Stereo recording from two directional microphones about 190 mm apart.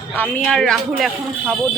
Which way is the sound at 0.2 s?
5° left (ahead or behind).